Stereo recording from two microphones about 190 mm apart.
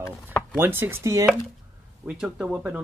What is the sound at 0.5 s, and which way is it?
Speech, 10° right (ahead or behind).